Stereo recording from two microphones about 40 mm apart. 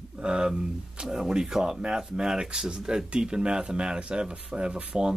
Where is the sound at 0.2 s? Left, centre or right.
Centre.